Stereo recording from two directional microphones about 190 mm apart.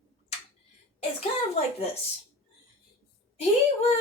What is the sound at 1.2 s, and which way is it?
Speech, 30° left (ahead or behind).